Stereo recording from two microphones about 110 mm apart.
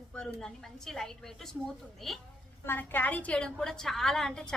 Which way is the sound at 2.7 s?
15° left (ahead or behind).